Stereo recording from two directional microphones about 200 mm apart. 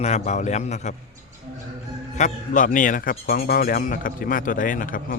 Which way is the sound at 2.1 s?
40° left (ahead or behind).